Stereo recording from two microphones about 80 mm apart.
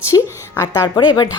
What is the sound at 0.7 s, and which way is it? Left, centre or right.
Speech, left.